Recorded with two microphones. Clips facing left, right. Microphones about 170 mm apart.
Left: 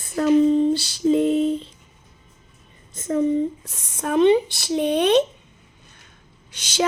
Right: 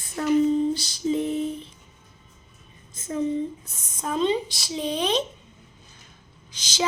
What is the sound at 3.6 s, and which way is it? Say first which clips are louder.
Speech: left 4 dB; 85° left.